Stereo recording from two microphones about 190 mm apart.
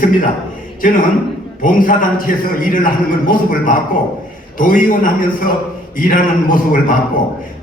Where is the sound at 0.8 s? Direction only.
45° left (ahead or behind).